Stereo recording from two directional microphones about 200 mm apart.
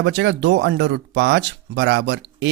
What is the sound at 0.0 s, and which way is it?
Speech, 60° right (ahead or behind).